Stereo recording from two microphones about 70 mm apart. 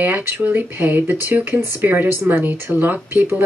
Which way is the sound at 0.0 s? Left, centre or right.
Right.